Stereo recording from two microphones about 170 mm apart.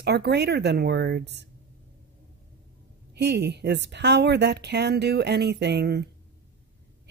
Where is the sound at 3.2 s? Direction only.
80° right.